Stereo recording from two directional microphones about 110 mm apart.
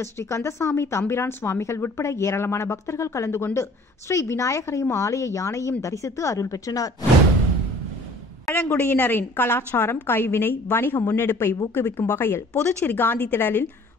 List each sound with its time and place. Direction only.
0.0 s a woman's voice: 25° left (ahead or behind)
8.7 s a woman's voice: 15° left (ahead or behind)